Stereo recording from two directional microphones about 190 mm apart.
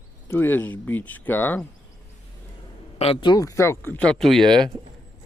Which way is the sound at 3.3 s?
15° left (ahead or behind).